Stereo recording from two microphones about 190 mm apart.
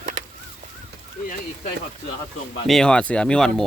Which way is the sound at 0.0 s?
35° right (ahead or behind).